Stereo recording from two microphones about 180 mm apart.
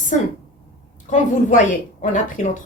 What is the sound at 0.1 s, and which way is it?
Speech, 45° left (ahead or behind).